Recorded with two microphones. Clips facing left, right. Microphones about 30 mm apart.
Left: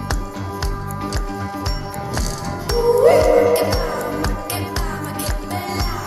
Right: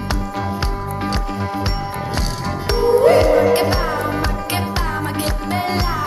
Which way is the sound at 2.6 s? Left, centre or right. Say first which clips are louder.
Even; right.